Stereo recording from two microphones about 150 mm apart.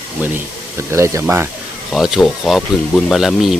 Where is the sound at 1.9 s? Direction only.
Centre (ahead or behind).